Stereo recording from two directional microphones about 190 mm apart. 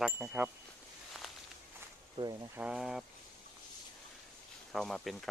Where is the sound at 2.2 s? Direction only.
20° right (ahead or behind).